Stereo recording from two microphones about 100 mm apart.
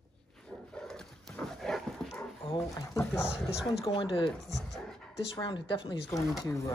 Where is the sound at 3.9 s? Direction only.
60° left (ahead or behind).